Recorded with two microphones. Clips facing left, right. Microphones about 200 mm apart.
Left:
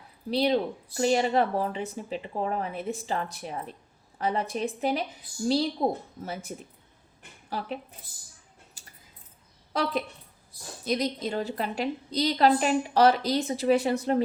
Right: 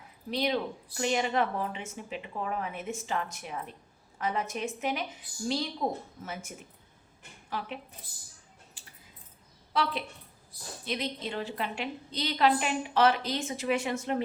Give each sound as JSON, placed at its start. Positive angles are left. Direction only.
{"t": 0.3, "sound": "speech", "side_deg": 35}
{"t": 8.8, "sound": "a sound", "side_deg": 40}
{"t": 9.7, "sound": "speech", "side_deg": 40}